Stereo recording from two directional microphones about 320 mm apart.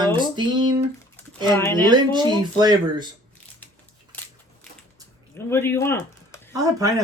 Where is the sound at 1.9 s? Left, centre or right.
Centre.